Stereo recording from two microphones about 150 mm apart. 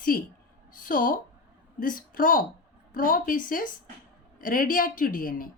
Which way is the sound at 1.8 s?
65° left (ahead or behind).